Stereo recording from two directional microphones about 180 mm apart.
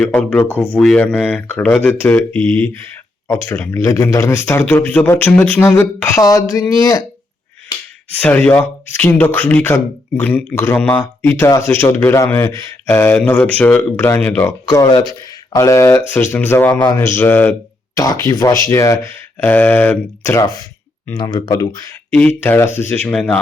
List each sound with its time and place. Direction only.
0.0 s speech: 5° left (ahead or behind)
8.2 s speech: 10° left (ahead or behind)